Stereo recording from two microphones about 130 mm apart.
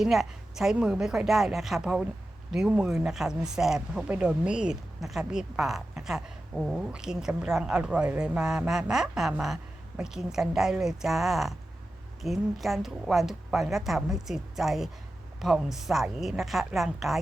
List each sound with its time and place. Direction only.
0.0 s speech: 5° right (ahead or behind)